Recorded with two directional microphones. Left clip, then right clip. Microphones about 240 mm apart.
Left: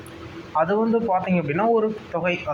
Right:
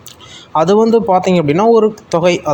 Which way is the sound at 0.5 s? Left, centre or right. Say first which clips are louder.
Right 10 dB; right.